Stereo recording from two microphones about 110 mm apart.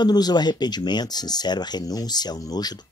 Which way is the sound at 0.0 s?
40° left (ahead or behind).